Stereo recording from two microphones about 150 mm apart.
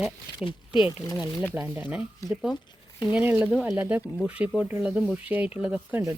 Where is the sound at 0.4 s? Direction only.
35° left (ahead or behind).